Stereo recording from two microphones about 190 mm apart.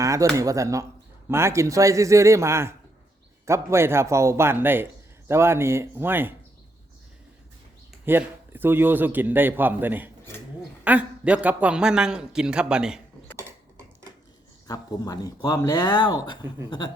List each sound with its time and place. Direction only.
0.0 s a sound: 15° right (ahead or behind)
0.3 s a man's voice: 15° right (ahead or behind)
8.0 s a man's voice: 10° right (ahead or behind)
14.7 s speech: 20° left (ahead or behind)